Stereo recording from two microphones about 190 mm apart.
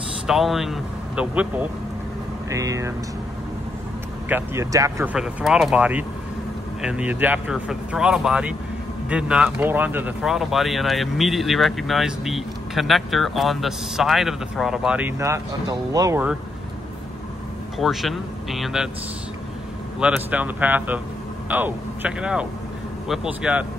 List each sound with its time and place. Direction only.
0.3 s speech: centre (ahead or behind); by 2.9 s 15° right (ahead or behind)
4.3 s speech: 10° right (ahead or behind)
5.1 s speech: 5° right (ahead or behind)
17.7 s speech: centre (ahead or behind)
20.0 s speech: 5° right (ahead or behind)